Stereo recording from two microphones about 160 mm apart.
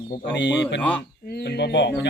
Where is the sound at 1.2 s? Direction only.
80° left.